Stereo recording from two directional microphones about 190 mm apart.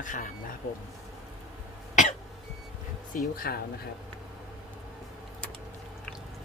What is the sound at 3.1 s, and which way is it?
Speech, 45° left (ahead or behind).